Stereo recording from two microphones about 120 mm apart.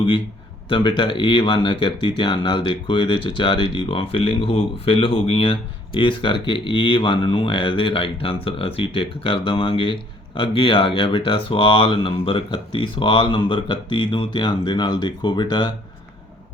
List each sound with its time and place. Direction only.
0.7 s speech: 45° left (ahead or behind)